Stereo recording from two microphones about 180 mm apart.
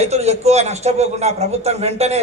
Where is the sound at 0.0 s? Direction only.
35° right (ahead or behind).